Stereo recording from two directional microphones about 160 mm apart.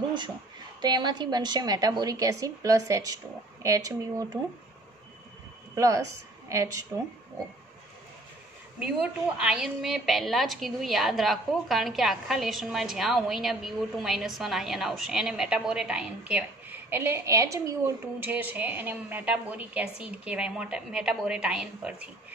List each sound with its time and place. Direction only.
0.7 s a woman's voice: 25° right (ahead or behind)
5.8 s a woman's voice: 20° right (ahead or behind)
8.7 s a woman's voice: 5° right (ahead or behind)